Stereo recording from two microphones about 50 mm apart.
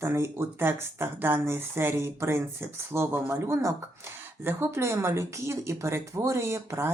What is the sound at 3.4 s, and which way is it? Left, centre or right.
Speech, right.